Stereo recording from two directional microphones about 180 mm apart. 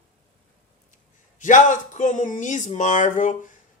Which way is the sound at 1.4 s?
45° left (ahead or behind).